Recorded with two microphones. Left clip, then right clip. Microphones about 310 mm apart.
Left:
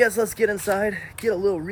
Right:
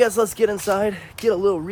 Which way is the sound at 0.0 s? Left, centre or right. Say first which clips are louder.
Right 2 dB; centre.